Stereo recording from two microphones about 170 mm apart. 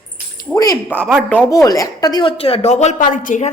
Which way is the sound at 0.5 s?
20° left (ahead or behind).